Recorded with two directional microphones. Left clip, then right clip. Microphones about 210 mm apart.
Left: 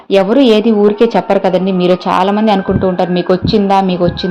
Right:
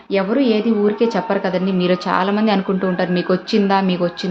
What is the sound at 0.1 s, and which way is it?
A woman's voice, 30° left (ahead or behind).